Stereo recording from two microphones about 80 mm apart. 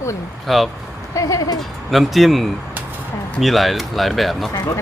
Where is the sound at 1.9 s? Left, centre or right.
Centre.